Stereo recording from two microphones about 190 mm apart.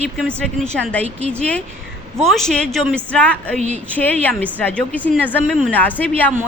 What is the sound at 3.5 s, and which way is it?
Speech, 35° right (ahead or behind).